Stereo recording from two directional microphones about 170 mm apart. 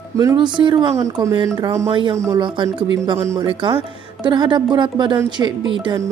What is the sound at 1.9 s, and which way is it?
Speech, 30° right (ahead or behind).